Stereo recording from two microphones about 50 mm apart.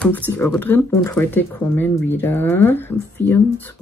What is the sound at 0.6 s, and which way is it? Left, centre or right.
Speech, left.